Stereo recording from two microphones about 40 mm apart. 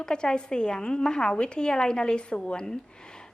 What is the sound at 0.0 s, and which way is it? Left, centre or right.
A woman's voice, centre.